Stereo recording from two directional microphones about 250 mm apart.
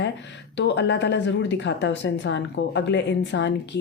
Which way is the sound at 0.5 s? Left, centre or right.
Left.